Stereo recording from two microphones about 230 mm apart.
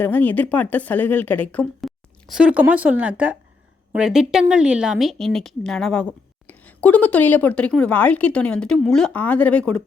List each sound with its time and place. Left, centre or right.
0.0 s speech: centre